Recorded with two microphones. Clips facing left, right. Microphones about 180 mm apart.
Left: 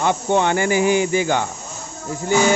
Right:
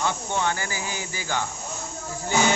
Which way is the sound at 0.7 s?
70° left (ahead or behind).